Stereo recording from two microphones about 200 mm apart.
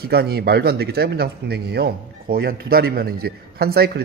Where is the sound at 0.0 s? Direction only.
50° right (ahead or behind).